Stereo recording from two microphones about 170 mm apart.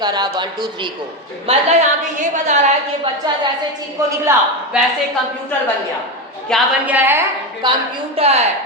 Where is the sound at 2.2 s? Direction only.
45° right (ahead or behind).